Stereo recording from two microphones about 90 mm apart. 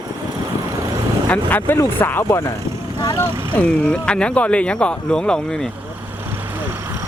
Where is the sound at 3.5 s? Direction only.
15° left (ahead or behind).